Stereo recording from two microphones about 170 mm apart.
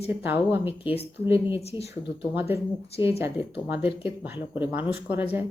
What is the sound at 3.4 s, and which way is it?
Speech, 35° left (ahead or behind).